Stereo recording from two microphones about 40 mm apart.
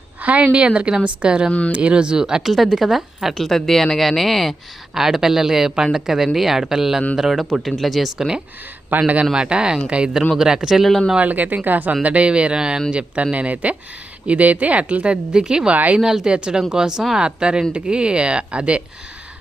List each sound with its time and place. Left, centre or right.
0.2 s a woman's voice: right; by 2.4 s centre
2.4 s speech: centre
3.4 s speech: centre
9.0 s speech: right
9.3 s a woman's voice: right
10.3 s speech: centre
10.8 s speech: centre
11.2 s speech: right
12.0 s a woman's voice: right
15.7 s speech: right
16.0 s a woman's voice: centre